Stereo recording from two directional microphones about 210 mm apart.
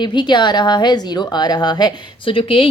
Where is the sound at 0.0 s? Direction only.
20° left (ahead or behind).